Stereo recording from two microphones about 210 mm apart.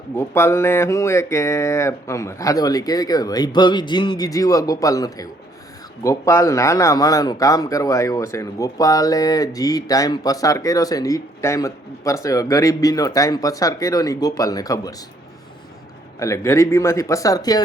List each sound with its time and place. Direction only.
0.2 s a man's voice: 10° left (ahead or behind)
16.1 s a man's voice: 15° left (ahead or behind)